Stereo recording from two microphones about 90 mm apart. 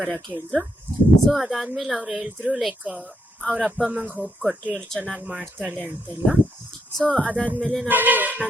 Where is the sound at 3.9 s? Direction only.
15° right (ahead or behind).